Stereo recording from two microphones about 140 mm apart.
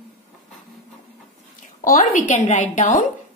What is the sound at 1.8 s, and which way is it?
A woman's voice, 70° left (ahead or behind).